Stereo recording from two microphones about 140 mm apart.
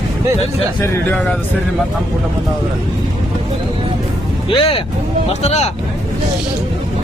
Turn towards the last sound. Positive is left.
turn(degrees=50)  # may be behind; listen again after turning